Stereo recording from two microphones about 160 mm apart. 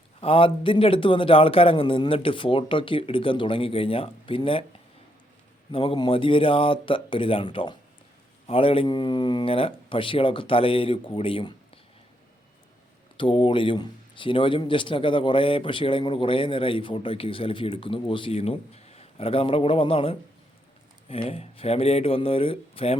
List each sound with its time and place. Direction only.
0.2 s a man's voice: 35° left (ahead or behind)
5.7 s a man's voice: 35° left (ahead or behind)
13.1 s a man's voice: 30° left (ahead or behind)